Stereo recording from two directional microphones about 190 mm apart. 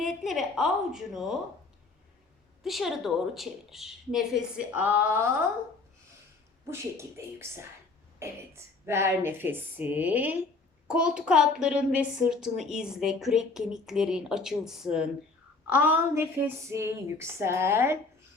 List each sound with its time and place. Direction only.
0.0 s a woman's voice: centre (ahead or behind)
2.6 s a woman's voice: centre (ahead or behind)
6.7 s a woman's voice: 15° right (ahead or behind)